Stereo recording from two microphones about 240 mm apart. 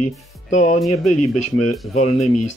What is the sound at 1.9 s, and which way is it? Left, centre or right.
Speech, left.